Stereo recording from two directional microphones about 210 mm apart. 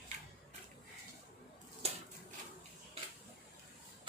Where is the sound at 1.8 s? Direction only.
30° right (ahead or behind).